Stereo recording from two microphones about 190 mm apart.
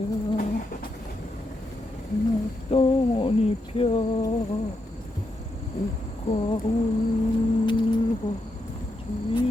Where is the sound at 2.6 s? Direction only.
30° left (ahead or behind).